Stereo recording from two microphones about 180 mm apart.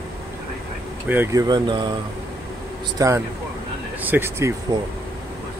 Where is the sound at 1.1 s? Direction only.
15° right (ahead or behind).